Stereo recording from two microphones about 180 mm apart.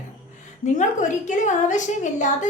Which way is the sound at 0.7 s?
45° left (ahead or behind).